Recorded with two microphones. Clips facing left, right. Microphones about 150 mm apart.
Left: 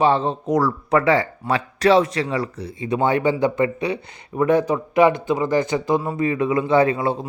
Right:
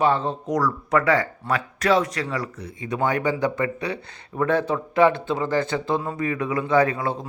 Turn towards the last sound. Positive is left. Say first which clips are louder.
# left 3 dB
turn(degrees=20)  # may be behind; listen again after turning